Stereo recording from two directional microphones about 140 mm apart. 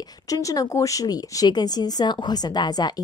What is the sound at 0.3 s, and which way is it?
A woman's voice, 25° left (ahead or behind).